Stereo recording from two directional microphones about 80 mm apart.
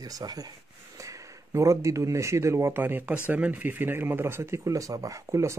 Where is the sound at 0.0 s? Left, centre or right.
Right.